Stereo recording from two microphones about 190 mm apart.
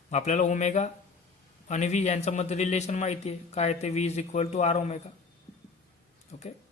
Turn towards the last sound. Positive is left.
turn(degrees=35)  # may be behind; listen again after turning